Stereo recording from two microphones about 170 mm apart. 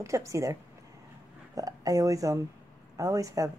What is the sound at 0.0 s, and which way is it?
Speech, 20° right (ahead or behind).